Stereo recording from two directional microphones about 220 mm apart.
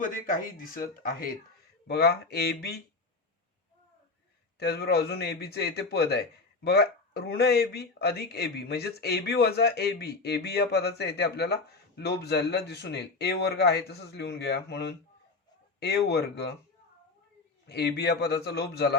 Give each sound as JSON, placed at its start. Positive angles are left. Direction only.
{"t": 0.0, "sound": "speech", "side_deg": 40}
{"t": 4.6, "sound": "speech", "side_deg": 45}
{"t": 17.7, "sound": "speech", "side_deg": 50}